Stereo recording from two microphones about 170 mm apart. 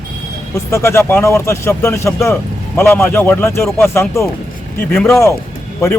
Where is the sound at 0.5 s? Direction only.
15° left (ahead or behind).